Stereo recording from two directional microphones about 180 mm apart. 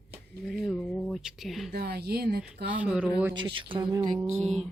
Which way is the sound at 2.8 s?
5° right (ahead or behind).